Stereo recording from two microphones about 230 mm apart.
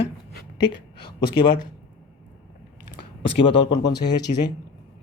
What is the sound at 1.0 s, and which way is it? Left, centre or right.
Speech, centre.